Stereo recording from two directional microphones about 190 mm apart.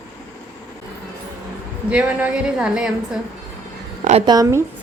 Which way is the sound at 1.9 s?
5° right (ahead or behind).